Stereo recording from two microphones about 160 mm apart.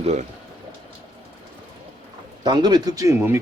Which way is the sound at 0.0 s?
45° right (ahead or behind).